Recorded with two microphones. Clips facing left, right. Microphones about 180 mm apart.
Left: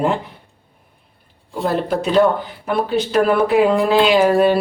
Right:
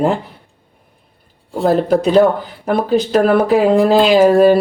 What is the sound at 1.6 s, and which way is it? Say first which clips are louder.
Speech: right 6 dB; 40° right (ahead or behind).